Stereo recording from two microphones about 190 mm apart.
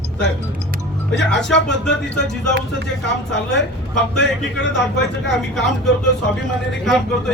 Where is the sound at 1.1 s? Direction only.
65° left (ahead or behind).